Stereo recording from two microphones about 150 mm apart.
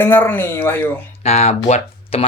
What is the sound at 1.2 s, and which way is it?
Speech, 45° left (ahead or behind).